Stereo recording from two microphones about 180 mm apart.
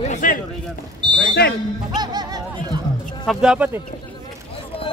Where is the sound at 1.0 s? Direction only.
25° right (ahead or behind).